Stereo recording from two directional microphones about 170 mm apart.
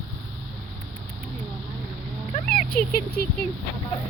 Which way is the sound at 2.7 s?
65° left (ahead or behind).